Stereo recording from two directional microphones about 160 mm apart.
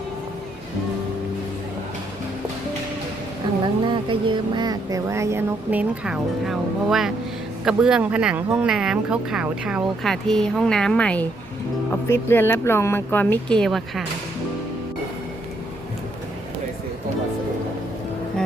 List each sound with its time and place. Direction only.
3.8 s speech: 30° right (ahead or behind)
6.1 s speech: centre (ahead or behind)